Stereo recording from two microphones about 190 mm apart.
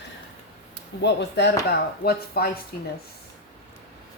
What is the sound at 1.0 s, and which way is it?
Speech, 65° left (ahead or behind).